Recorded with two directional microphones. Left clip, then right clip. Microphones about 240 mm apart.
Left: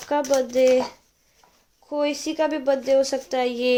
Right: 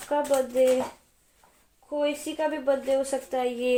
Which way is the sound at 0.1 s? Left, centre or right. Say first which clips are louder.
Left 3 dB; left.